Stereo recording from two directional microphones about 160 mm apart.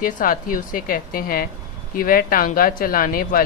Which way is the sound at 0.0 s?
60° left (ahead or behind).